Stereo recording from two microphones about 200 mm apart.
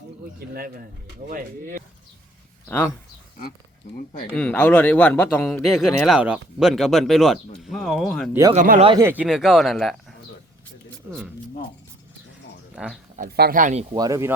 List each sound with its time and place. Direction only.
0.3 s speech: 50° right (ahead or behind)
2.6 s speech: 5° left (ahead or behind)
4.4 s speech: 5° left (ahead or behind)
8.3 s speech: 15° right (ahead or behind)
8.5 s speech: 45° right (ahead or behind)
9.0 s speech: 10° right (ahead or behind)
12.7 s speech: 5° right (ahead or behind)
13.1 s speech: 50° right (ahead or behind)
13.9 s speech: 15° right (ahead or behind)